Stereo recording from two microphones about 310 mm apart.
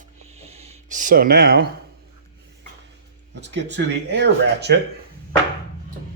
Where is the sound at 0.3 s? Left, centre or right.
Centre.